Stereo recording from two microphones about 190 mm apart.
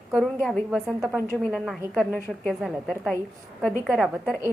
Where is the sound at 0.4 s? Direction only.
Centre (ahead or behind).